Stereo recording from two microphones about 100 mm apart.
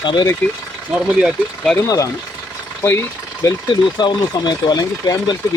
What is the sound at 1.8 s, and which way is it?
Speech, 35° left (ahead or behind).